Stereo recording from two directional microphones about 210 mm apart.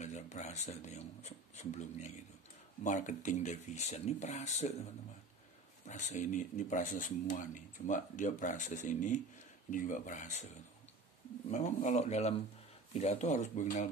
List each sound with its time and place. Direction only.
0.0 s speech: 35° left (ahead or behind)
5.9 s speech: 35° left (ahead or behind)
11.5 s speech: 35° left (ahead or behind)